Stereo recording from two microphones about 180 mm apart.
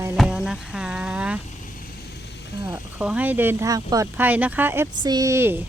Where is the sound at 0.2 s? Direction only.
5° right (ahead or behind).